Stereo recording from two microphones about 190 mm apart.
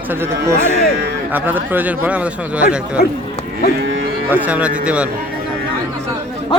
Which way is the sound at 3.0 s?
55° left (ahead or behind).